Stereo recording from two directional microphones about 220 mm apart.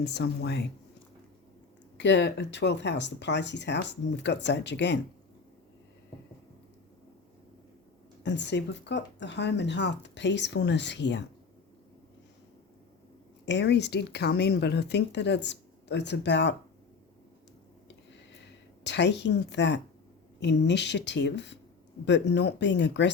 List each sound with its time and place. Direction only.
0.0 s speech: 50° left (ahead or behind)
2.0 s speech: 55° left (ahead or behind)
8.2 s speech: 50° left (ahead or behind)
13.4 s speech: 55° left (ahead or behind)
18.9 s speech: 55° left (ahead or behind)